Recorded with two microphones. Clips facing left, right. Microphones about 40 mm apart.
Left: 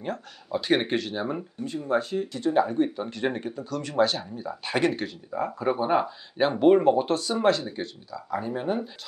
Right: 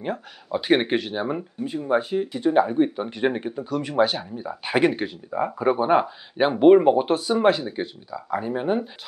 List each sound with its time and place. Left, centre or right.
0.0 s speech: centre